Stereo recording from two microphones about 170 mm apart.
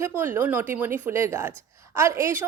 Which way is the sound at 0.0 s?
15° right (ahead or behind).